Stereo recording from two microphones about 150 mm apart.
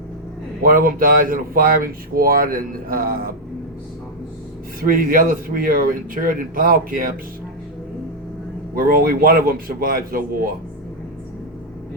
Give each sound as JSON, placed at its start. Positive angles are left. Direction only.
{"t": 0.6, "sound": "speech", "side_deg": -70}
{"t": 4.8, "sound": "speech", "side_deg": -70}
{"t": 8.7, "sound": "speech", "side_deg": -75}